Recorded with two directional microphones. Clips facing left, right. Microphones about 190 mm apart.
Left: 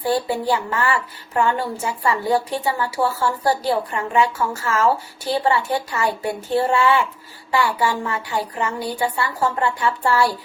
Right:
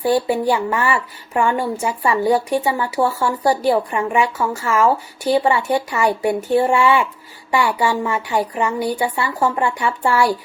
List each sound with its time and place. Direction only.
0.1 s speech: 20° right (ahead or behind)